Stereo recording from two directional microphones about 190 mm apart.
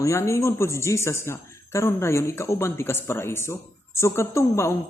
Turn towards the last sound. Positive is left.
turn(degrees=15)  # may be behind; listen again after turning